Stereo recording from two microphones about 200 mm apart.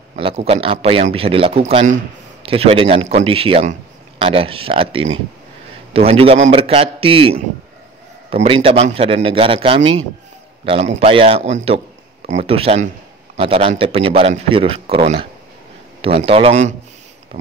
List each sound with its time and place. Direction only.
0.1 s a man's voice: 30° right (ahead or behind)
16.3 s a man's voice: 30° right (ahead or behind)